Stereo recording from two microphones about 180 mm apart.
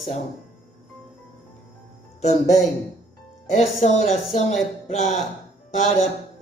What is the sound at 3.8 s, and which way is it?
Speech, 40° left (ahead or behind).